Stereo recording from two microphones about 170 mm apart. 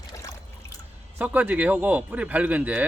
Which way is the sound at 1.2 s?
10° right (ahead or behind).